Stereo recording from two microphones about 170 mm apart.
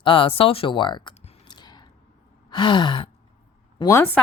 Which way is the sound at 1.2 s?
30° left (ahead or behind).